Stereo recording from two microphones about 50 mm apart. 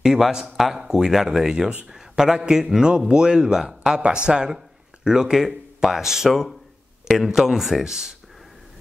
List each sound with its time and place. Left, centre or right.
0.0 s speech: centre